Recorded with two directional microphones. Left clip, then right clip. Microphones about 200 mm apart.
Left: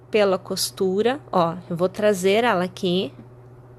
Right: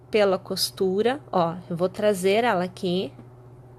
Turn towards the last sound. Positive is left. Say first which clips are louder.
# left 3 dB
turn(degrees=10)  # may be behind; listen again after turning